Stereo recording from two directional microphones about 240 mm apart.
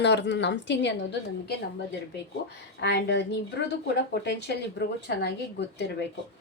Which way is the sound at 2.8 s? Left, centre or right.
Left.